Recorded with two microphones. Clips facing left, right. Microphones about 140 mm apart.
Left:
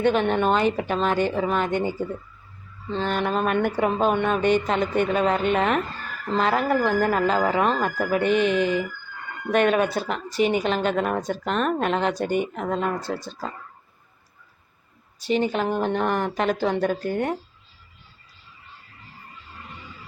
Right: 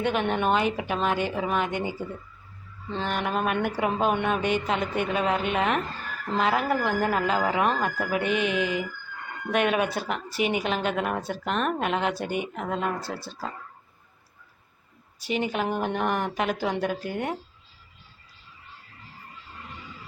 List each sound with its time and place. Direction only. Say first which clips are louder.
0.0 s speech: left 4 dB; 5° right (ahead or behind)
15.2 s speech: left 4 dB; 10° right (ahead or behind)